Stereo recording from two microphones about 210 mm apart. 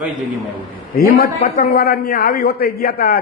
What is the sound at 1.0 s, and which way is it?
A man's voice, 45° left (ahead or behind).